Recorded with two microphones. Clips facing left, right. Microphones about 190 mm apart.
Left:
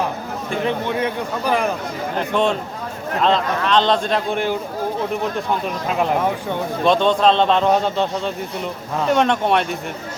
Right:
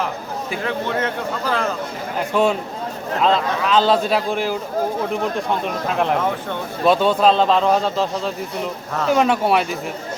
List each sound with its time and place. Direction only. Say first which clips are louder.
0.6 s speech: left 2 dB; 15° left (ahead or behind)
2.1 s a man's voice: right 1 dB; 5° right (ahead or behind)
5.9 s a man's voice: left 1 dB; 5° left (ahead or behind)